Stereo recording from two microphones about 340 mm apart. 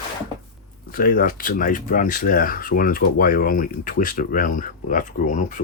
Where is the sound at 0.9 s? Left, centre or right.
Left.